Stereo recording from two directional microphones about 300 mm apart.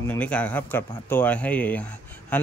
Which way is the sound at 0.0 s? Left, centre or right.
Centre.